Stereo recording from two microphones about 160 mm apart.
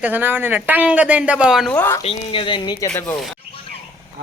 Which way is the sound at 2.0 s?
40° left (ahead or behind).